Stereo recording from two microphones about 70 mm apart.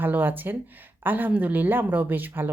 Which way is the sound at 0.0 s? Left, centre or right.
Right.